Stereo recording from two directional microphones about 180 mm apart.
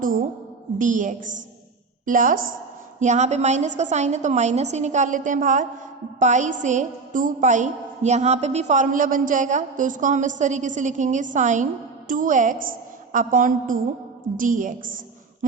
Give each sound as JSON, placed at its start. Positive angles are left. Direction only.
{"t": 0.8, "sound": "a woman's voice", "side_deg": -45}